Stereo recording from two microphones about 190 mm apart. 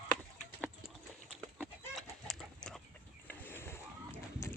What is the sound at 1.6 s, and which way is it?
Chicken, 5° left (ahead or behind).